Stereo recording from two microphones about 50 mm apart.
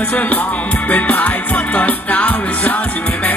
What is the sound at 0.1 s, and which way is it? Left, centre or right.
Music, left.